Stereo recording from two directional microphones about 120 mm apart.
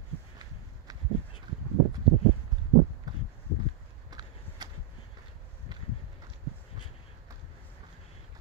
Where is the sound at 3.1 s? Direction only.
35° right (ahead or behind).